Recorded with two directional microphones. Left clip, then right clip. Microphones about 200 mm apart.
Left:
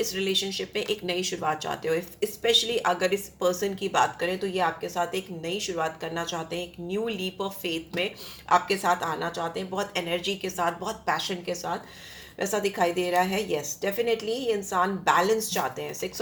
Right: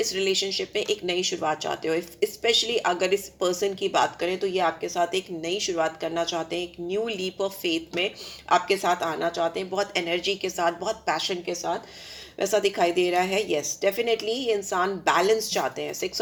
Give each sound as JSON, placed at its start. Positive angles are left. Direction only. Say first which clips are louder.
{"t": 0.0, "sound": "a woman's voice", "louder": "right 2 dB", "side_deg": -35}